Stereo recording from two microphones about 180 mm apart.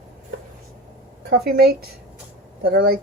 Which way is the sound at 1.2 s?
60° right (ahead or behind).